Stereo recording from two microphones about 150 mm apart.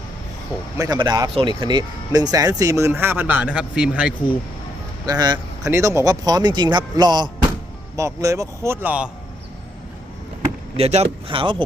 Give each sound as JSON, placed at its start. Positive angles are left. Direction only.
{"t": 0.8, "sound": "speech", "side_deg": -30}
{"t": 5.0, "sound": "speech", "side_deg": -25}
{"t": 10.8, "sound": "speech", "side_deg": -45}